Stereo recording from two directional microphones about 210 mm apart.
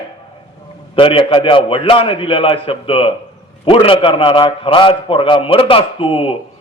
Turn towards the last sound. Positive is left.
turn(degrees=25)  # may be behind; listen again after turning